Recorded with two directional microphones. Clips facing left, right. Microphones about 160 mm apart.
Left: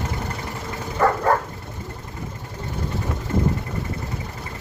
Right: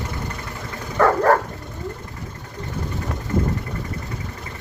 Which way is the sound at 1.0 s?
75° right (ahead or behind).